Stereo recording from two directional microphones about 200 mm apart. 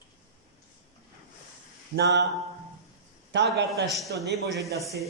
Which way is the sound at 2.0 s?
55° right (ahead or behind).